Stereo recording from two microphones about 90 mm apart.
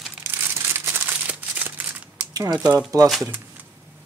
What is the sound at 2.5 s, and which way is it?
Speech, 10° right (ahead or behind).